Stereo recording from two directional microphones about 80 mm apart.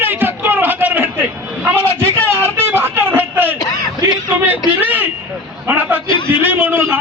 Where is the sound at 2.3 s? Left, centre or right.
Right.